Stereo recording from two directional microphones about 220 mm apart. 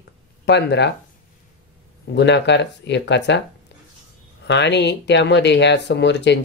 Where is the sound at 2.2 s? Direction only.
50° left (ahead or behind).